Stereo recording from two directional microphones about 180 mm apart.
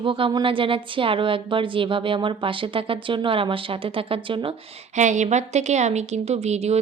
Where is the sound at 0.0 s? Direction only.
30° right (ahead or behind).